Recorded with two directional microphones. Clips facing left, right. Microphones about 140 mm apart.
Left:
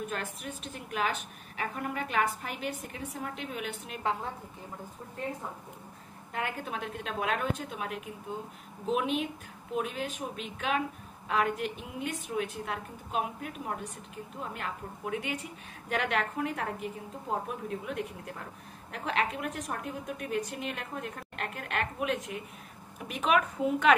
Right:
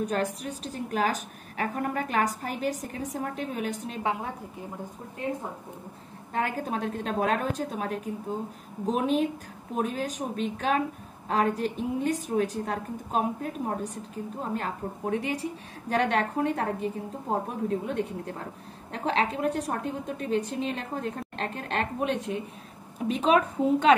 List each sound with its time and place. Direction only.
0.0 s a woman's voice: 40° right (ahead or behind)
4.0 s a woman's voice: 15° right (ahead or behind)
6.3 s a woman's voice: 40° right (ahead or behind)